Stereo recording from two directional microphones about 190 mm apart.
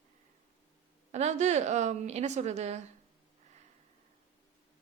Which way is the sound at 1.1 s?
35° right (ahead or behind).